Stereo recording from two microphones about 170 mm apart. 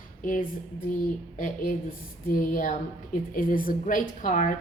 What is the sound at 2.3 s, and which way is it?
A woman's voice, 50° left (ahead or behind).